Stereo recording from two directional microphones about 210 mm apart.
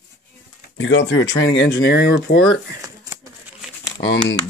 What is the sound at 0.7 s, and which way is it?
Speech, 60° left (ahead or behind).